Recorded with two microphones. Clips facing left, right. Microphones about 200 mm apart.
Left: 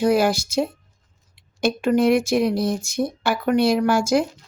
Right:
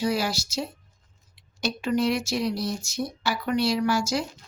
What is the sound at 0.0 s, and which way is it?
Speech, 55° left (ahead or behind).